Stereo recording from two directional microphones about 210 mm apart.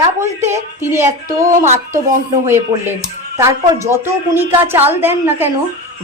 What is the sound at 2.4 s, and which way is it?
A woman's voice, 10° right (ahead or behind).